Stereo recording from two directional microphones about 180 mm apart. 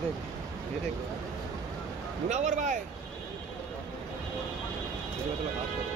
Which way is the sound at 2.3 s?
40° right (ahead or behind).